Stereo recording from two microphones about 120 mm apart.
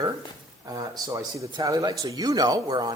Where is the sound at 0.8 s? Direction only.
30° right (ahead or behind).